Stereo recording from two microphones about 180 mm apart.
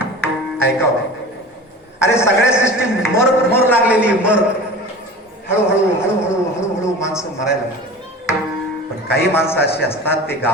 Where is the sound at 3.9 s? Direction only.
5° right (ahead or behind).